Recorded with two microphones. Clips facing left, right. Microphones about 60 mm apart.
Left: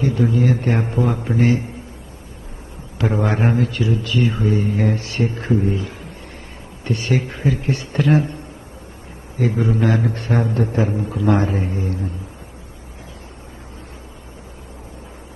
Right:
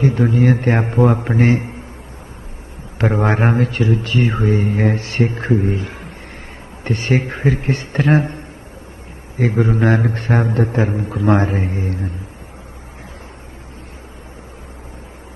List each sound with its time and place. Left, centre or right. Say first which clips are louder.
0.0 s speech: right 3 dB; right
3.0 s speech: right 3 dB; right
9.4 s speech: right 2 dB; right